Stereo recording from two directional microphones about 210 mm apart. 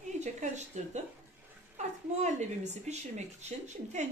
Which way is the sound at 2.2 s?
35° right (ahead or behind).